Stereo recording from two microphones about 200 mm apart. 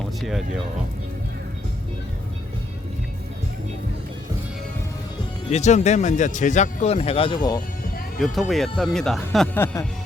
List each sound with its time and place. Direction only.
0.2 s speech: centre (ahead or behind)
5.5 s speech: 35° left (ahead or behind)
8.2 s speech: centre (ahead or behind)